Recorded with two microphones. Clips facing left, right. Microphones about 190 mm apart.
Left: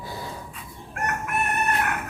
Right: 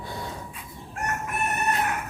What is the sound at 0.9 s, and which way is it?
Chicken, 60° left (ahead or behind).